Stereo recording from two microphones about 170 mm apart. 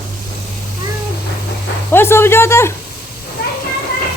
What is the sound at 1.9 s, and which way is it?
Speech, 15° left (ahead or behind).